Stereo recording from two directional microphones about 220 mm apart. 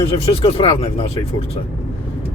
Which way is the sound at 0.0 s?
25° left (ahead or behind).